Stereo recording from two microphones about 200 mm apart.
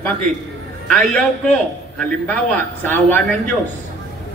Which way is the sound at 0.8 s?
5° left (ahead or behind).